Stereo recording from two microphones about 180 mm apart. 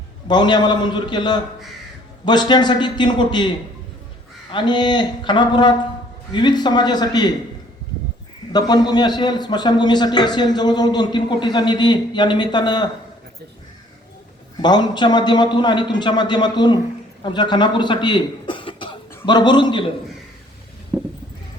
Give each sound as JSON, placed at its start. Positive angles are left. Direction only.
{"t": 0.3, "sound": "a man's voice", "side_deg": 25}
{"t": 4.5, "sound": "a man's voice", "side_deg": 25}
{"t": 8.5, "sound": "a man's voice", "side_deg": 25}
{"t": 14.6, "sound": "a man's voice", "side_deg": 25}